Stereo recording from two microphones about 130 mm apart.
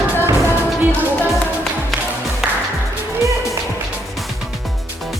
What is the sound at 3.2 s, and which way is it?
Music, 25° right (ahead or behind).